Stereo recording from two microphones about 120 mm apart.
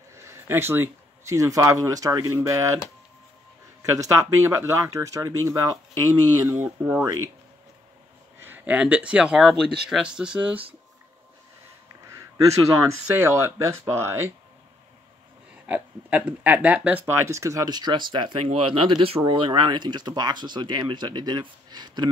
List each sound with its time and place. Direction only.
0.1 s speech: 20° right (ahead or behind)
3.9 s speech: 25° right (ahead or behind)
6.6 s speech: 15° right (ahead or behind)
8.4 s speech: 15° right (ahead or behind)
13.0 s speech: 20° right (ahead or behind)
15.6 s speech: 15° right (ahead or behind); by 22.1 s 40° right (ahead or behind)